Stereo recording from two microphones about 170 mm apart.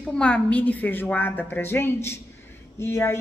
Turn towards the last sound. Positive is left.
turn(degrees=15)  # may be behind; listen again after turning